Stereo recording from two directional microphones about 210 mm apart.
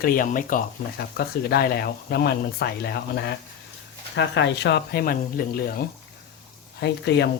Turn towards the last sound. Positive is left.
turn(degrees=55)  # may be behind; listen again after turning